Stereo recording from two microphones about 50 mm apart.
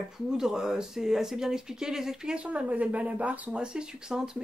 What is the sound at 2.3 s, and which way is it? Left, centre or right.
Speech, right.